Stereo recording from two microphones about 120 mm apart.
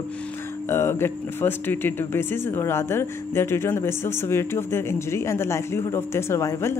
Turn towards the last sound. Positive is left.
turn(degrees=25)  # may be behind; listen again after turning